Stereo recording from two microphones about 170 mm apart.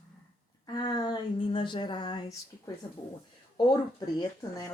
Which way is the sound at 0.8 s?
25° left (ahead or behind).